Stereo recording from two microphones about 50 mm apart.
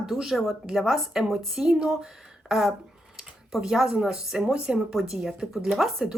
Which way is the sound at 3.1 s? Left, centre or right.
Centre.